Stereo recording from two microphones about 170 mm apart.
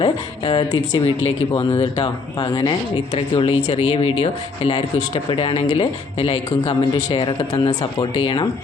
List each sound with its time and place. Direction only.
0.0 s speech: 30° left (ahead or behind)